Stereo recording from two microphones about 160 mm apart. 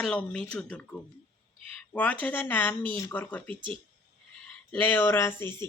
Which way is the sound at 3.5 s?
35° right (ahead or behind).